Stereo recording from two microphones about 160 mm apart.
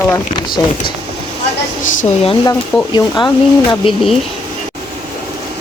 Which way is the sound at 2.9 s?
30° left (ahead or behind).